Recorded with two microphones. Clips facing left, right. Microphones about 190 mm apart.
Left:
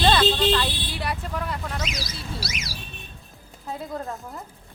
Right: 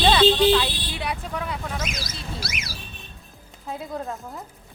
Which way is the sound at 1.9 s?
50° right (ahead or behind).